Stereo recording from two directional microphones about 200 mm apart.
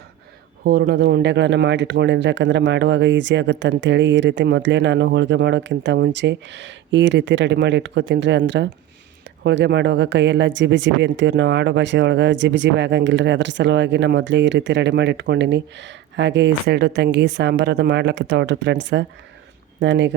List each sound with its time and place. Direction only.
0.6 s speech: 50° right (ahead or behind)